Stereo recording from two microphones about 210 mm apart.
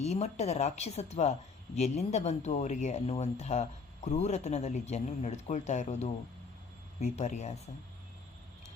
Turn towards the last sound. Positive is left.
turn(degrees=30)  # may be behind; listen again after turning